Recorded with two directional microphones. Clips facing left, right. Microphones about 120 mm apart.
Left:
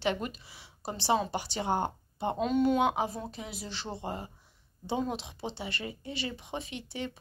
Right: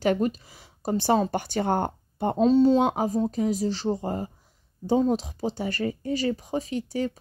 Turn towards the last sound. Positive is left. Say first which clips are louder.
# right 10 dB
turn(degrees=-40)  # may be behind; listen again after turning